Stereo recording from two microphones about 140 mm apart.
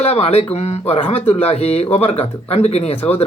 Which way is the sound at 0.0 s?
45° left (ahead or behind).